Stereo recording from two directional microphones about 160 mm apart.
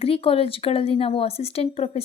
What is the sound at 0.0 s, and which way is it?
Speech, 35° left (ahead or behind).